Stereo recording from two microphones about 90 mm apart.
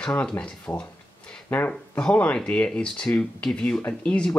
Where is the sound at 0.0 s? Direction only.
15° left (ahead or behind).